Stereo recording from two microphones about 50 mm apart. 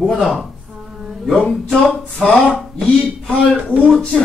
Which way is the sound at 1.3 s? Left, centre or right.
Centre.